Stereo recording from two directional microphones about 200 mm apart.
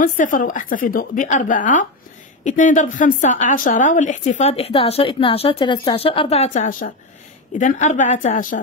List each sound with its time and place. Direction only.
0.0 s a woman's voice: 45° left (ahead or behind)